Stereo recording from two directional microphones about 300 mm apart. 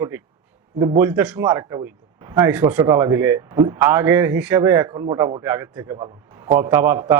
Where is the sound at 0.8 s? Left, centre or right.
Centre.